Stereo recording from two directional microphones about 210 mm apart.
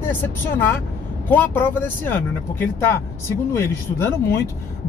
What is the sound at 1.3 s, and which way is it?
Speech, 10° left (ahead or behind).